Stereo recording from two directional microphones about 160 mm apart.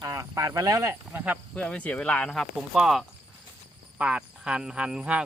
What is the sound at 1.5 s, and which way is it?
Speech, 5° left (ahead or behind).